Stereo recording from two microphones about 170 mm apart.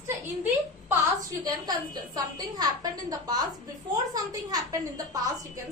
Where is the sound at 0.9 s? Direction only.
20° right (ahead or behind).